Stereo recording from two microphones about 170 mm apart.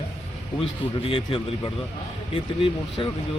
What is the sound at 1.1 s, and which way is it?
Speech, 25° left (ahead or behind).